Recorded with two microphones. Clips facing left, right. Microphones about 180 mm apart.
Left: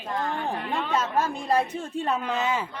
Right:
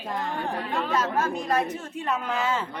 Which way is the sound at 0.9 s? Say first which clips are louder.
Even; 30° left (ahead or behind).